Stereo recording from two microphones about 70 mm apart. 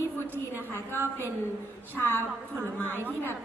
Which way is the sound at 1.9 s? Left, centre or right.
Left.